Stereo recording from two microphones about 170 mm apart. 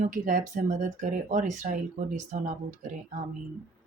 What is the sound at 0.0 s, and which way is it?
Speech, 50° right (ahead or behind).